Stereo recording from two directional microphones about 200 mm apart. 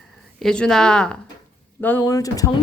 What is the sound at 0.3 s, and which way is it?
A woman's voice, 5° left (ahead or behind).